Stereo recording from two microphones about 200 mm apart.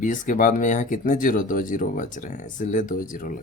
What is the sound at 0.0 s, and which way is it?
Speech, 40° left (ahead or behind).